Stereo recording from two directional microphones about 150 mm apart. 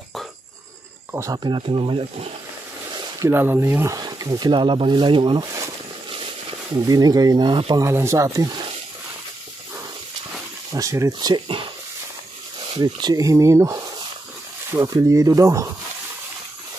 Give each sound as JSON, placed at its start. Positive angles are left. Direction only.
{"t": 1.1, "sound": "speech", "side_deg": -20}
{"t": 2.9, "sound": "a sound", "side_deg": -30}
{"t": 3.3, "sound": "speech", "side_deg": -15}
{"t": 6.7, "sound": "speech", "side_deg": -25}
{"t": 7.8, "sound": "speech", "side_deg": -20}
{"t": 10.7, "sound": "speech", "side_deg": -20}
{"t": 12.7, "sound": "speech", "side_deg": -30}